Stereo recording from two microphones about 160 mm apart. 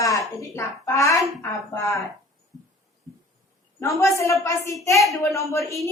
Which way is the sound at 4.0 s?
20° left (ahead or behind).